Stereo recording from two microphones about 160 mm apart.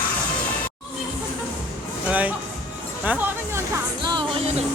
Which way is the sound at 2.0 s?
10° right (ahead or behind).